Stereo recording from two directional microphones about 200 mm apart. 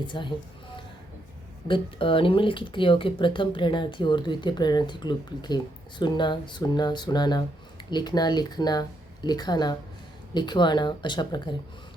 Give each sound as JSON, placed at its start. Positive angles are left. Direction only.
{"t": 0.1, "sound": "speech", "side_deg": 25}
{"t": 1.6, "sound": "speech", "side_deg": 25}